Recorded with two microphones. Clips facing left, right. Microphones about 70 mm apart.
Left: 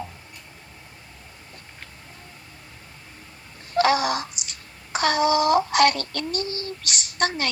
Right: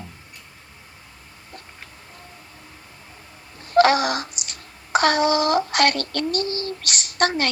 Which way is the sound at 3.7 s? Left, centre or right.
Right.